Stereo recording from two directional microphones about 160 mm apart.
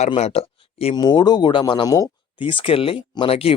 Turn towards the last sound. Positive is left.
turn(degrees=40)  # may be behind; listen again after turning